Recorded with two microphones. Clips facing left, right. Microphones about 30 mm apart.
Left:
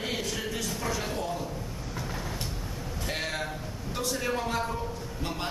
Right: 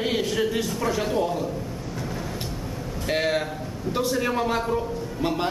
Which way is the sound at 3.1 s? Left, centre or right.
Centre.